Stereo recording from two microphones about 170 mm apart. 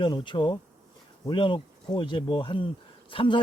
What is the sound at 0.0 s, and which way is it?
A man's voice, 30° left (ahead or behind).